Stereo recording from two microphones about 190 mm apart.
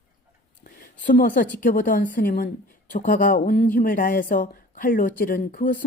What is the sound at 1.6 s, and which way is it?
Speech, 45° left (ahead or behind).